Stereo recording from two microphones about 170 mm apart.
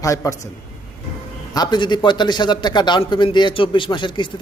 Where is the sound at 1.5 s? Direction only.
25° left (ahead or behind).